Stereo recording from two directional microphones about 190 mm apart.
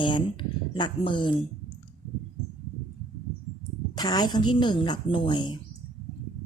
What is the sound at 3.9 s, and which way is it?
A woman's voice, 20° left (ahead or behind).